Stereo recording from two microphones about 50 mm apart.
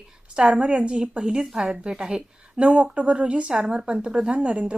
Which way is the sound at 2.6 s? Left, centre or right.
Right.